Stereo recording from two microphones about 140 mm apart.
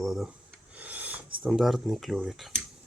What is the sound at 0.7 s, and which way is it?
Filing, 10° right (ahead or behind).